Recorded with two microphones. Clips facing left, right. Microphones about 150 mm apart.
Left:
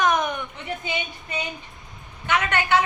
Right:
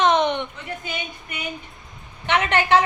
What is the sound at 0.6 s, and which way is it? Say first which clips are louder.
Speech: left 2 dB; 20° left (ahead or behind).